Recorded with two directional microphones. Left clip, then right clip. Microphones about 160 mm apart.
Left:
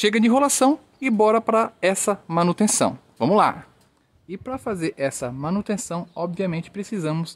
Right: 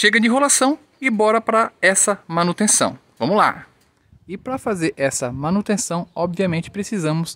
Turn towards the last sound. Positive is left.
turn(degrees=-25)  # may be behind; listen again after turning